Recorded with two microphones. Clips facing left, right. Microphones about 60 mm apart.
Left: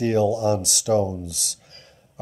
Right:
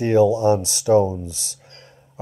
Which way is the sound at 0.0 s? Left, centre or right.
Right.